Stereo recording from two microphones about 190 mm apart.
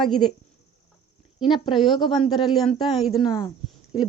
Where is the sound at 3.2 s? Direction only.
25° left (ahead or behind).